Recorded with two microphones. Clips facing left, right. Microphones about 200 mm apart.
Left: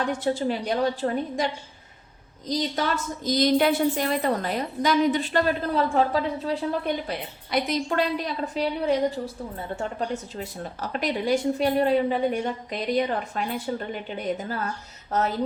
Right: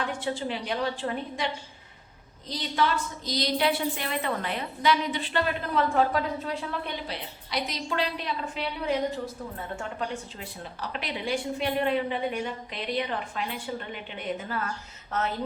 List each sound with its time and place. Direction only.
0.0 s a woman's voice: 40° left (ahead or behind)
2.5 s a woman's voice: 40° left (ahead or behind)
6.8 s a woman's voice: 50° left (ahead or behind)